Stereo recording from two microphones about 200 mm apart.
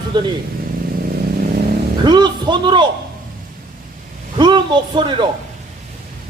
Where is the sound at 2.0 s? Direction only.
20° right (ahead or behind).